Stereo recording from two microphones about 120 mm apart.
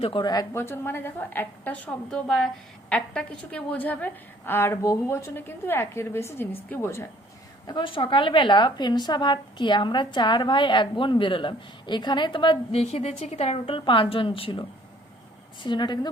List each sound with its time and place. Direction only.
0.0 s a woman's voice: 45° left (ahead or behind)
0.3 s a woman's voice: 25° left (ahead or behind)
7.7 s a woman's voice: 40° left (ahead or behind)
12.7 s a woman's voice: 60° left (ahead or behind)
13.7 s a woman's voice: 45° left (ahead or behind)